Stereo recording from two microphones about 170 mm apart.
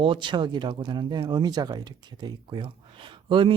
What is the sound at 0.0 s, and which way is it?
Speech, 30° right (ahead or behind).